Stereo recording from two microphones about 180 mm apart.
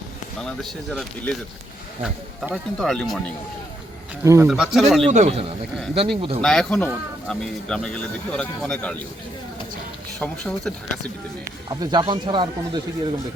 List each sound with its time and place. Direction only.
0.4 s speech: centre (ahead or behind)
4.2 s speech: 15° right (ahead or behind)
4.4 s speech: 5° right (ahead or behind)
5.1 s speech: 35° right (ahead or behind)
6.4 s speech: centre (ahead or behind)
10.2 s speech: 5° left (ahead or behind)
11.7 s speech: 20° right (ahead or behind)